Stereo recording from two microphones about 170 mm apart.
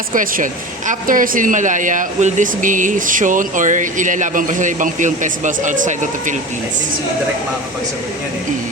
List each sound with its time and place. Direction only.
0.1 s speech: 50° right (ahead or behind)